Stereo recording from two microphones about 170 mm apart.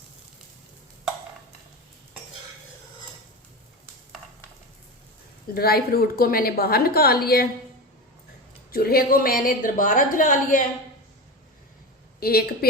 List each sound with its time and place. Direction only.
5.5 s a woman's voice: 65° left (ahead or behind)
8.7 s a woman's voice: 60° left (ahead or behind)
12.2 s a woman's voice: 65° left (ahead or behind)